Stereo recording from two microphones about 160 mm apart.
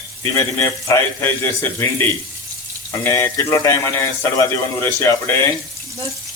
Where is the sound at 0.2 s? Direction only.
15° left (ahead or behind).